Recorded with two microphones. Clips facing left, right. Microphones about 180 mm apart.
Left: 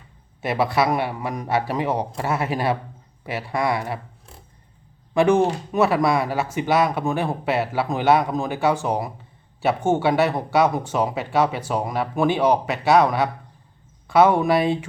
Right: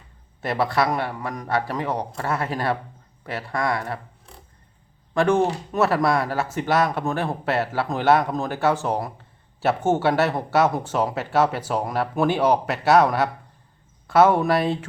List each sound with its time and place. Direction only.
0.4 s a man's voice: 5° left (ahead or behind)
5.1 s speech: centre (ahead or behind)